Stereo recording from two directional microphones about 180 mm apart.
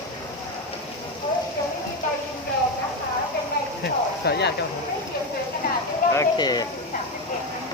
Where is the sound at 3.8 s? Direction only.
65° left (ahead or behind).